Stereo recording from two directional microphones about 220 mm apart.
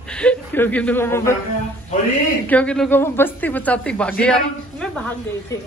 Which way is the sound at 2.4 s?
5° left (ahead or behind).